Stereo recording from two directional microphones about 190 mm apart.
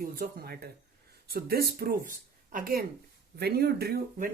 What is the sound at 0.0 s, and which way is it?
Speech, 50° right (ahead or behind).